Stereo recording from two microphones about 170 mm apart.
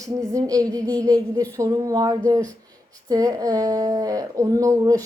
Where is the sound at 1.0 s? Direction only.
20° right (ahead or behind).